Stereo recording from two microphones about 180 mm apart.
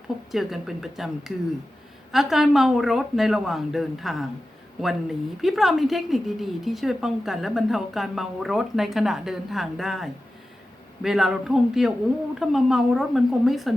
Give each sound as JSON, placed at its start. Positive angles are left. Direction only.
{"t": 0.3, "sound": "a woman's voice", "side_deg": 0}
{"t": 2.1, "sound": "a woman's voice", "side_deg": 0}